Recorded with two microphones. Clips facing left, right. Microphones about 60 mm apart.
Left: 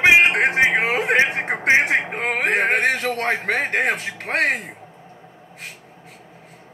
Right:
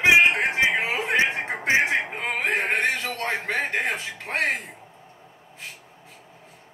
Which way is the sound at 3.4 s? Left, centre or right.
Left.